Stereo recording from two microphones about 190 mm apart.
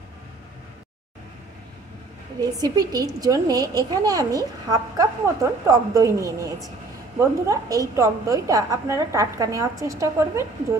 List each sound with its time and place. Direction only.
2.4 s a woman's voice: 20° right (ahead or behind)